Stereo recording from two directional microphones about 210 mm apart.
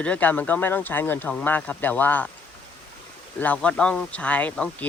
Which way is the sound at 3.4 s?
5° left (ahead or behind).